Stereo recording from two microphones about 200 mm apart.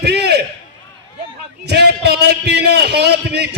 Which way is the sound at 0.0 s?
55° right (ahead or behind).